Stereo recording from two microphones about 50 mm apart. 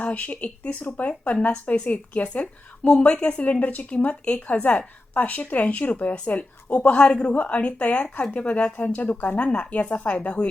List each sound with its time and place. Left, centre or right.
0.0 s a woman's voice: left